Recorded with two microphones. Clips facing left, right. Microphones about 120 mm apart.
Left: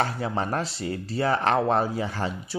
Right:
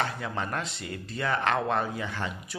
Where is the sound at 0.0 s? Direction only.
35° left (ahead or behind).